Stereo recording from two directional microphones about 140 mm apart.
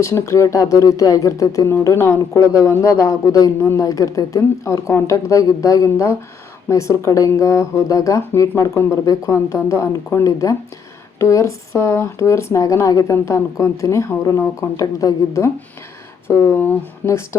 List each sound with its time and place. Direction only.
0.0 s speech: 20° left (ahead or behind)